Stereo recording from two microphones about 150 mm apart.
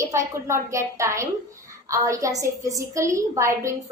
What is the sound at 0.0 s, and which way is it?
A woman's voice, 20° right (ahead or behind).